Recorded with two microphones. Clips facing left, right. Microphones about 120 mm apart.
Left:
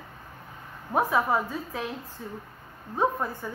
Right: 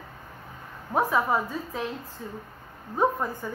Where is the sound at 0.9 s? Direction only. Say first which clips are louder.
Even; 10° left (ahead or behind).